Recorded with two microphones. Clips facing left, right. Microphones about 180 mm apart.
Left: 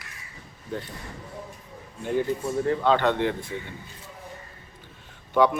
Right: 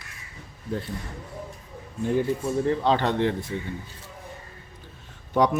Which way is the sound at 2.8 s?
35° right (ahead or behind).